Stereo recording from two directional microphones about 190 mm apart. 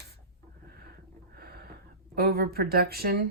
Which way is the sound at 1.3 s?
55° right (ahead or behind).